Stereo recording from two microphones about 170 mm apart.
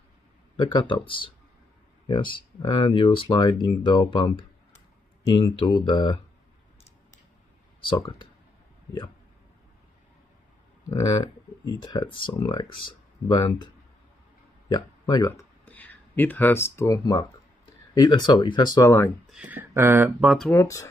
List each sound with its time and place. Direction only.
0.6 s speech: 25° left (ahead or behind)
7.8 s speech: 25° left (ahead or behind)
11.6 s speech: 25° left (ahead or behind)
14.7 s speech: 20° left (ahead or behind)
19.3 s speech: 10° right (ahead or behind)
20.4 s speech: 15° left (ahead or behind)